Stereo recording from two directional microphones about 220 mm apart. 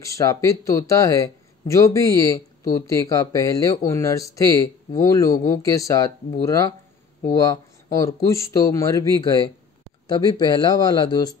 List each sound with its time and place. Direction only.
0.0 s speech: 15° left (ahead or behind)
10.0 s speech: 20° left (ahead or behind)